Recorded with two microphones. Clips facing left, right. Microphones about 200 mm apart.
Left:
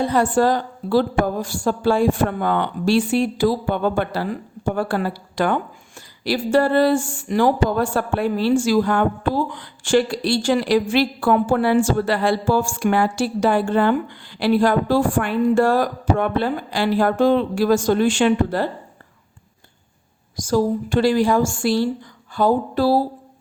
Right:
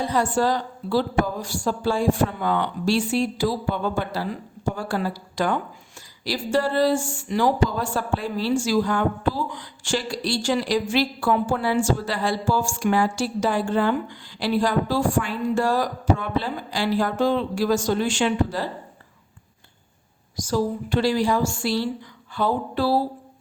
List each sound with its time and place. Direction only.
0.0 s speech: 55° left (ahead or behind)
20.3 s a woman's voice: 50° left (ahead or behind)